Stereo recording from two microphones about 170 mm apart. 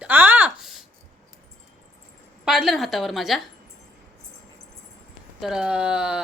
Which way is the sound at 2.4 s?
Centre (ahead or behind).